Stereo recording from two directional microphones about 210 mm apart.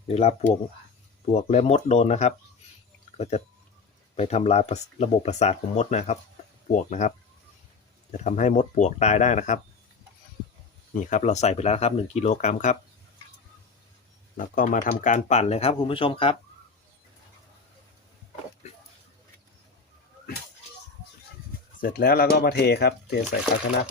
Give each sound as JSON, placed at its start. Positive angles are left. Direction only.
{"t": 0.1, "sound": "speech", "side_deg": 30}
{"t": 8.1, "sound": "speech", "side_deg": 35}
{"t": 10.9, "sound": "speech", "side_deg": 35}
{"t": 14.3, "sound": "speech", "side_deg": 40}
{"t": 21.8, "sound": "speech", "side_deg": 45}